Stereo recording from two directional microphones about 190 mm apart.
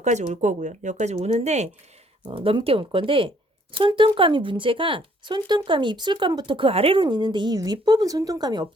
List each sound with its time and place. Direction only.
0.0 s speech: 40° right (ahead or behind); by 8.6 s 20° right (ahead or behind)